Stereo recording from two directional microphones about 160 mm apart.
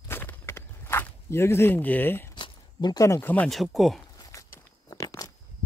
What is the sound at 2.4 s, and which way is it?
Speech, 25° left (ahead or behind).